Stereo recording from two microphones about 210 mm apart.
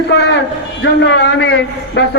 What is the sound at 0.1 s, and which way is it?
A man's voice, 55° left (ahead or behind).